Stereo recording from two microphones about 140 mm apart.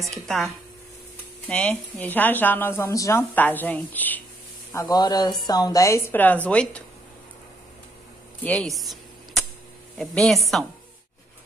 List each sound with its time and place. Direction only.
1.5 s speech: 10° left (ahead or behind)
4.7 s speech: 30° left (ahead or behind); by 6.8 s 10° left (ahead or behind)
8.5 s a woman's voice: 5° left (ahead or behind)
9.9 s a woman's voice: 5° left (ahead or behind)